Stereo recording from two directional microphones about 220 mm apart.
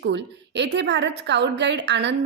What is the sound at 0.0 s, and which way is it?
A woman's voice, 50° right (ahead or behind).